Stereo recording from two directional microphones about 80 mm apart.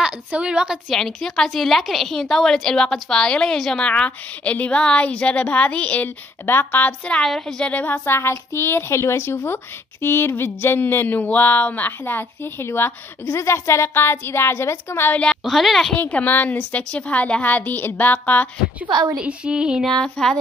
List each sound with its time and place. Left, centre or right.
0.0 s a woman's voice: centre
0.8 s a woman's voice: centre
7.7 s a woman's voice: left
15.4 s speech: centre
16.0 s speech: centre
19.1 s speech: centre
20.0 s speech: centre